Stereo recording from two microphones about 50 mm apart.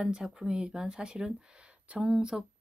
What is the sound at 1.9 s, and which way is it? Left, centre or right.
Speech, centre.